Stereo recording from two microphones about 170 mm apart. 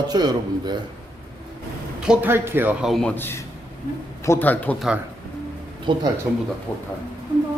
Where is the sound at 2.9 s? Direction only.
10° left (ahead or behind).